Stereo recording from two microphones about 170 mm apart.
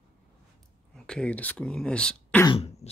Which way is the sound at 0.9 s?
5° left (ahead or behind).